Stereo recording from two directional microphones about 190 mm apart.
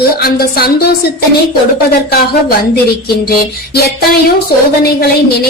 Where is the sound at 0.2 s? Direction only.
55° left (ahead or behind).